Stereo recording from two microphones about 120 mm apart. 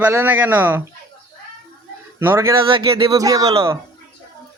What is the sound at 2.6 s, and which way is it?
Speech, 45° right (ahead or behind).